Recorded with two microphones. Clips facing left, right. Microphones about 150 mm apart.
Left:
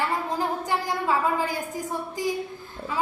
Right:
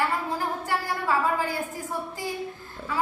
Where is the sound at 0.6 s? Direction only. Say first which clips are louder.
Left 2 dB; 15° left (ahead or behind).